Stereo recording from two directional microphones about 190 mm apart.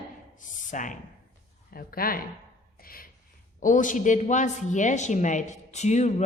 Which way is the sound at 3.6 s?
45° left (ahead or behind).